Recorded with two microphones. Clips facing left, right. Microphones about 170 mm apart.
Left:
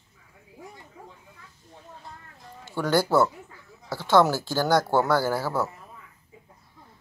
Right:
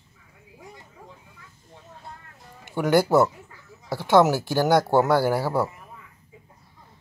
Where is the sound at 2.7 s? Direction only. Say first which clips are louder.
Right 3 dB; 20° right (ahead or behind).